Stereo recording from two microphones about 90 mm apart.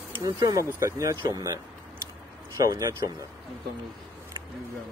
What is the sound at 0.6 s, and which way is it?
Speech, 30° right (ahead or behind).